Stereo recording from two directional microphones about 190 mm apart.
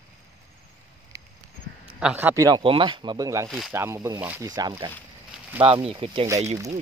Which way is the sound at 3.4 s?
Centre (ahead or behind).